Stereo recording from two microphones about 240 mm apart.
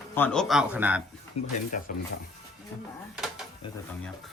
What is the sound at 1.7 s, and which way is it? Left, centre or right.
Speech, left.